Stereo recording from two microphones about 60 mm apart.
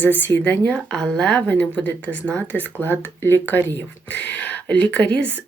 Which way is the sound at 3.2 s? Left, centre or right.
Left.